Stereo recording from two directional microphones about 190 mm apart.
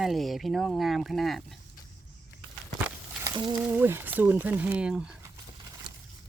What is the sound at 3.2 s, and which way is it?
Speech, 20° right (ahead or behind).